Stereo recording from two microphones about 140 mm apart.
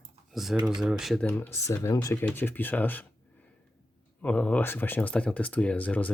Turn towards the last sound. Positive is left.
turn(degrees=10)  # may be behind; listen again after turning